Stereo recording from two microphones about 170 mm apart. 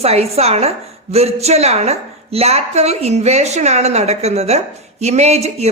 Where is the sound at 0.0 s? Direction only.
35° right (ahead or behind).